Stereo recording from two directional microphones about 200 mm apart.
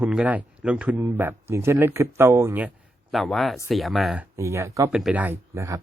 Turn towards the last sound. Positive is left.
turn(degrees=-15)  # may be behind; listen again after turning